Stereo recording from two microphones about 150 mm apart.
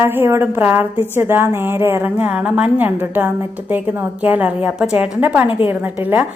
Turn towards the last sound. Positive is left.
turn(degrees=-15)  # may be behind; listen again after turning